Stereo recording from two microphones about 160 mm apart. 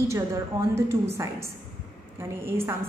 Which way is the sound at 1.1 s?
15° right (ahead or behind).